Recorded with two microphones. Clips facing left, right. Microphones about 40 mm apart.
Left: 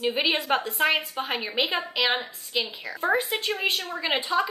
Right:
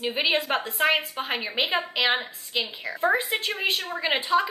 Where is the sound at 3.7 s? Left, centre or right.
Centre.